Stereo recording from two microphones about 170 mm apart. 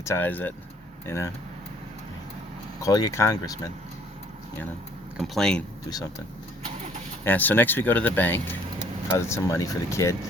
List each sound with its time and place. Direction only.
0.0 s speech: 15° left (ahead or behind)
2.8 s speech: 20° left (ahead or behind)
5.1 s speech: centre (ahead or behind)
7.3 s speech: 10° left (ahead or behind)